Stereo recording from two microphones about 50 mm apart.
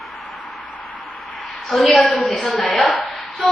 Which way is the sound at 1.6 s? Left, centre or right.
Centre.